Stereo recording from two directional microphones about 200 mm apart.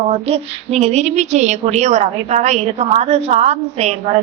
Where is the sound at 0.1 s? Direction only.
30° right (ahead or behind).